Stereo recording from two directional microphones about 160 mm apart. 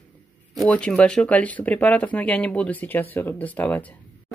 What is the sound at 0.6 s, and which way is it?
Speech, 5° left (ahead or behind).